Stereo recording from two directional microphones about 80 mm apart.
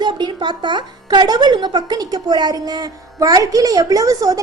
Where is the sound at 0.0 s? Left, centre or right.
Right.